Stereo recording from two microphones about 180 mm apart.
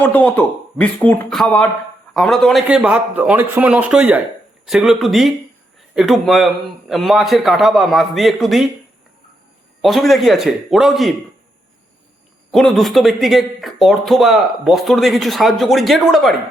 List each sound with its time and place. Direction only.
0.0 s a man's voice: 10° left (ahead or behind)
9.8 s speech: centre (ahead or behind)
12.5 s speech: centre (ahead or behind)